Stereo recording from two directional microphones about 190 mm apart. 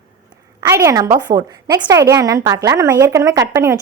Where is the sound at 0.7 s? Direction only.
15° right (ahead or behind).